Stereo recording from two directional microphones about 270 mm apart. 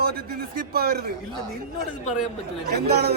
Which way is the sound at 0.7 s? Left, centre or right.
Right.